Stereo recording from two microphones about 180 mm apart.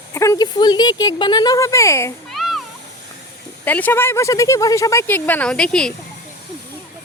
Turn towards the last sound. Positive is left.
turn(degrees=5)  # may be behind; listen again after turning